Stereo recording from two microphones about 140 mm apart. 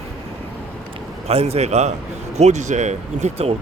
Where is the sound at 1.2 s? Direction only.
45° right (ahead or behind).